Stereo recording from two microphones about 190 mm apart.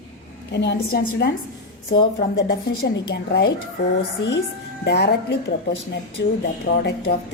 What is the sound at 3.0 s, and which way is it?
Speech, 60° left (ahead or behind).